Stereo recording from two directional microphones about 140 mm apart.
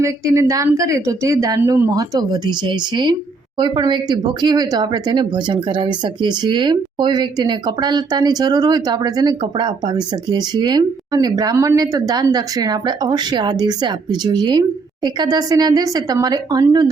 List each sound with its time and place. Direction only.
0.0 s a woman's voice: 20° right (ahead or behind)